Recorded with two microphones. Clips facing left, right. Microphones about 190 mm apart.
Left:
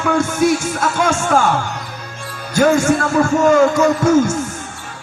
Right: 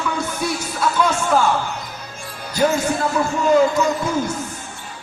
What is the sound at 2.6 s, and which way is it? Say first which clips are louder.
Speech: left 5 dB; 90° left.